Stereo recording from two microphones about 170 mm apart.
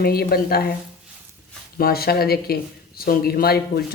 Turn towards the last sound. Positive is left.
turn(degrees=65)  # may be behind; listen again after turning